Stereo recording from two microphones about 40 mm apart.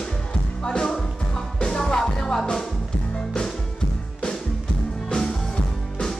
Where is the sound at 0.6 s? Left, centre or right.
Left.